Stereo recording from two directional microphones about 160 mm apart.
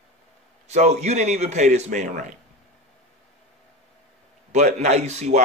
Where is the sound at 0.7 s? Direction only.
45° right (ahead or behind).